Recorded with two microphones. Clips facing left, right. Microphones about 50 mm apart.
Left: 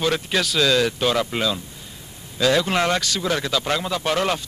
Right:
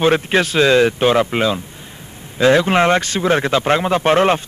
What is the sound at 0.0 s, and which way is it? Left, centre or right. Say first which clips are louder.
A man's voice: right 7 dB; right.